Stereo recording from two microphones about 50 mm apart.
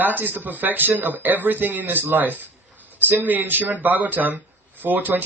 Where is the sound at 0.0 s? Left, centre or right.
Right.